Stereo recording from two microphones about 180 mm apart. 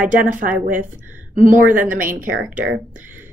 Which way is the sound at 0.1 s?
45° right (ahead or behind).